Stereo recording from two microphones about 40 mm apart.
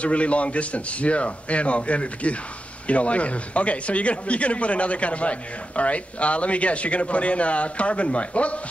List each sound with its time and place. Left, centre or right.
0.0 s speech: left